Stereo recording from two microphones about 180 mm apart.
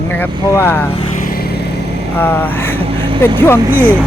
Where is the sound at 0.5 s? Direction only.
15° left (ahead or behind).